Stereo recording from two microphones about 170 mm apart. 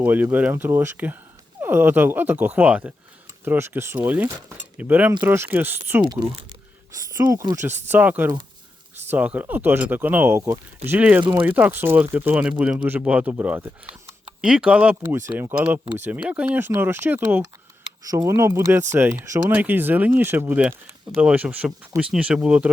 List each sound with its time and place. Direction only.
0.0 s speech: 10° right (ahead or behind)
6.0 s speech: 25° right (ahead or behind); by 22.7 s 5° right (ahead or behind)